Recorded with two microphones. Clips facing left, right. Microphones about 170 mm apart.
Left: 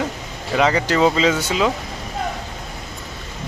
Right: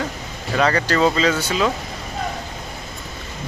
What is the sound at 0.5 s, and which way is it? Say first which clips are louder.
Speech: left 1 dB; 15° left (ahead or behind).